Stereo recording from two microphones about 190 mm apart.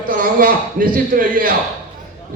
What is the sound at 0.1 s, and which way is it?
Speech, 50° right (ahead or behind).